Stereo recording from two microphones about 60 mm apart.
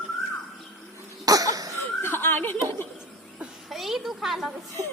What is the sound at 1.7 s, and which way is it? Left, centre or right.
Chuckle, left.